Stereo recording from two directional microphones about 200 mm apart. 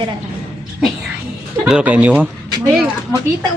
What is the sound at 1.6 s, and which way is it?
Speech, 5° right (ahead or behind).